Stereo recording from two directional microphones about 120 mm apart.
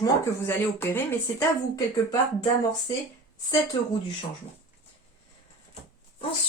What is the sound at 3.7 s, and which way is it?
Speech, 40° left (ahead or behind).